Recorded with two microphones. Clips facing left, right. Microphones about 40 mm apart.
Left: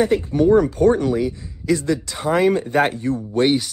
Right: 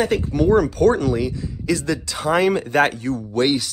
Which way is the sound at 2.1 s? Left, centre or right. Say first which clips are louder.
Right 2 dB; right.